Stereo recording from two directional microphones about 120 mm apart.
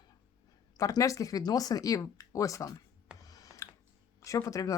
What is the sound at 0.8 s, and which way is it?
Speech, 30° left (ahead or behind).